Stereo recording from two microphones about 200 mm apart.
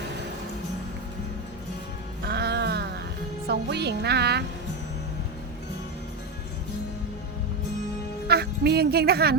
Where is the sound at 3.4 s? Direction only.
55° right (ahead or behind).